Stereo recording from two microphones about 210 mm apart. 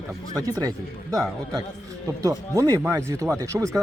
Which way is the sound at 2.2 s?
15° right (ahead or behind).